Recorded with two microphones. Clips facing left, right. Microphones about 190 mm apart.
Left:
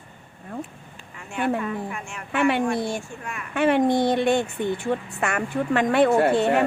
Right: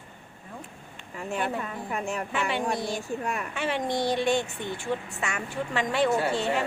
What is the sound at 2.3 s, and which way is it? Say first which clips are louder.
Speech: left 9 dB; 60° left (ahead or behind).